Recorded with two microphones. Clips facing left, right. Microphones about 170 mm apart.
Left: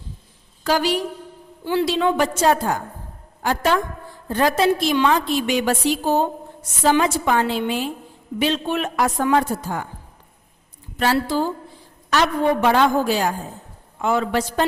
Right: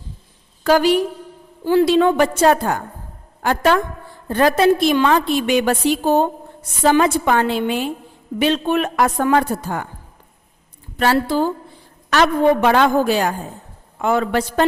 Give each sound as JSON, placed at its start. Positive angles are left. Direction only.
{"t": 0.6, "sound": "a woman's voice", "side_deg": -55}
{"t": 10.9, "sound": "a woman's voice", "side_deg": -60}